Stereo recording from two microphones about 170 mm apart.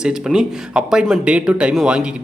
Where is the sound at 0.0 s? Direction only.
5° right (ahead or behind).